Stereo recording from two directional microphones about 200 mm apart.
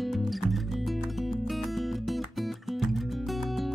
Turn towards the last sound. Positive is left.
turn(degrees=0)  # may be behind; listen again after turning